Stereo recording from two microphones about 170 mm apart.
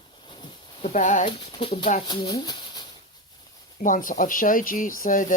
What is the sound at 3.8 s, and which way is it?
Speech, 50° left (ahead or behind).